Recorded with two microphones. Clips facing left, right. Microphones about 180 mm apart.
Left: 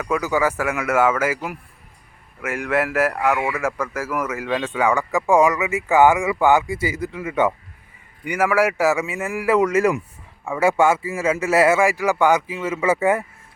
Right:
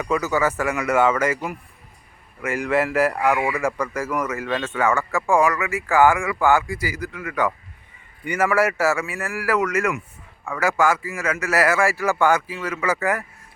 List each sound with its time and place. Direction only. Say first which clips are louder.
0.0 s speech: left 1 dB; 10° left (ahead or behind)
8.2 s a man's voice: left 1 dB; 10° left (ahead or behind); by 13.2 s 25° left (ahead or behind)